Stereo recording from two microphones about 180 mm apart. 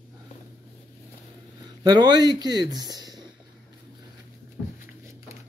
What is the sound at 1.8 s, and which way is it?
Speech, 25° right (ahead or behind).